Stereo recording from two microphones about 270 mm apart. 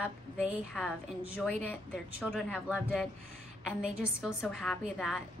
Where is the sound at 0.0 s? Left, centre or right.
Centre.